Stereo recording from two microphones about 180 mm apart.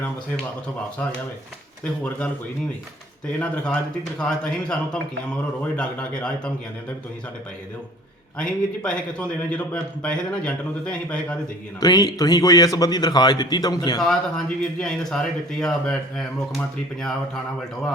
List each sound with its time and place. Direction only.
1.8 s a man's voice: 5° left (ahead or behind)
3.3 s a man's voice: 5° left (ahead or behind)
8.4 s a man's voice: 5° left (ahead or behind)
11.8 s a man's voice: 20° left (ahead or behind)
14.0 s speech: 5° left (ahead or behind)